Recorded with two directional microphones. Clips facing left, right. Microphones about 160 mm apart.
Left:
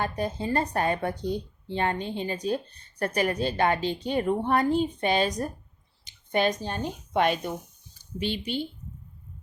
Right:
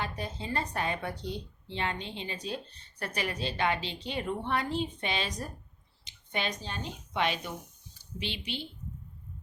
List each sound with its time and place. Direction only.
0.0 s speech: 45° left (ahead or behind)
8.5 s speech: 45° left (ahead or behind)